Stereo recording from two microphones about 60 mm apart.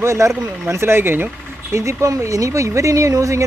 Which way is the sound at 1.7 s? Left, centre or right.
Right.